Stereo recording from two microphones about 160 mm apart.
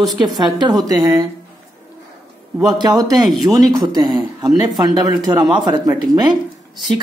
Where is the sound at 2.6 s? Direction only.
25° right (ahead or behind).